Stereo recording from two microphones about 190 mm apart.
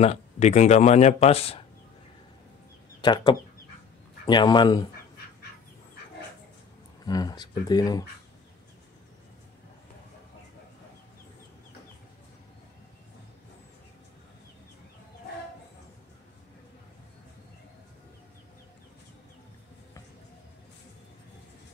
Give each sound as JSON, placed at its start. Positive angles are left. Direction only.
{"t": 0.0, "sound": "speech", "side_deg": 35}
{"t": 3.0, "sound": "speech", "side_deg": 25}
{"t": 7.1, "sound": "speech", "side_deg": 20}